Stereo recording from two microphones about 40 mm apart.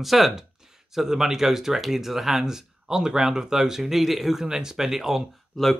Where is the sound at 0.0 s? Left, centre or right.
Centre.